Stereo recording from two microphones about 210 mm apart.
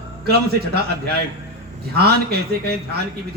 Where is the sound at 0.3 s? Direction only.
50° right (ahead or behind).